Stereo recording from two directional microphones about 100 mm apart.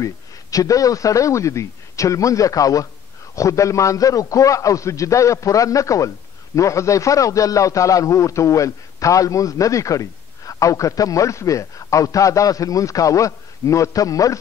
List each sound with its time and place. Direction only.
0.0 s a man's voice: 35° left (ahead or behind)